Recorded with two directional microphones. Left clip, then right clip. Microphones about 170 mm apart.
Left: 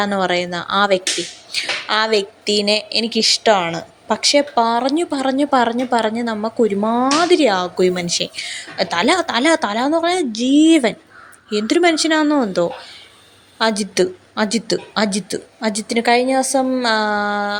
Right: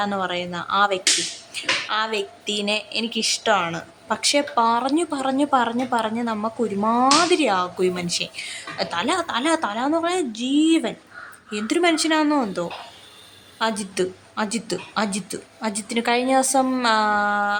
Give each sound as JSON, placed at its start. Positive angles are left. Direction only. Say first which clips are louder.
{"t": 0.0, "sound": "a woman's voice", "louder": "left 6 dB", "side_deg": 25}